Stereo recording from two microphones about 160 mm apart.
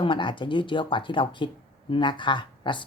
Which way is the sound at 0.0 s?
30° left (ahead or behind).